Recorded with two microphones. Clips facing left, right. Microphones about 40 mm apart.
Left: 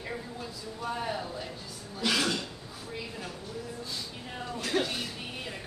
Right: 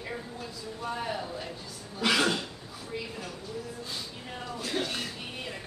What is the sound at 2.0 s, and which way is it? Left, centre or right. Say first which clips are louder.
Cough: right 3 dB; right.